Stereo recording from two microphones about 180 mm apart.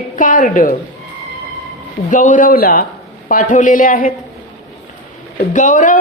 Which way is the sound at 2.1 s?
45° left (ahead or behind).